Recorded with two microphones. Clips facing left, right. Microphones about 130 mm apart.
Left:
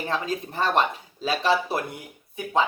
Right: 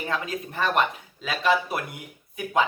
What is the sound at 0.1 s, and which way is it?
Speech, 30° left (ahead or behind).